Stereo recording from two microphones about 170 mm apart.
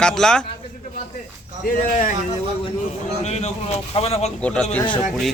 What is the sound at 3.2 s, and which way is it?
Speech, 40° left (ahead or behind).